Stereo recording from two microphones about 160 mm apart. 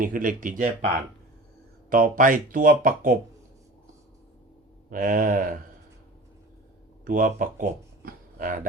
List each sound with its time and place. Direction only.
0.0 s speech: 60° right (ahead or behind)
1.9 s speech: 55° right (ahead or behind)
4.9 s speech: 55° right (ahead or behind)
7.0 s speech: 60° right (ahead or behind)